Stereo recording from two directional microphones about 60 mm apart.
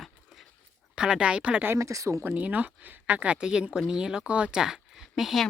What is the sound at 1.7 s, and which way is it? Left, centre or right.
Speech, right.